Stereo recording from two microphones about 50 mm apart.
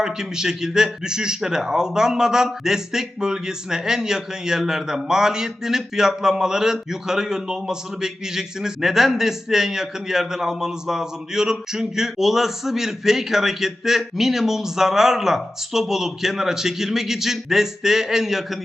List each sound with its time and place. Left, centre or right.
0.0 s a man's voice: centre